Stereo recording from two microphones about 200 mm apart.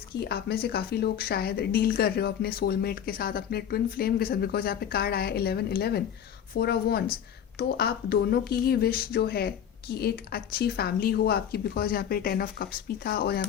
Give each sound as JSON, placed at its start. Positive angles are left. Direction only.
{"t": 0.1, "sound": "speech", "side_deg": 50}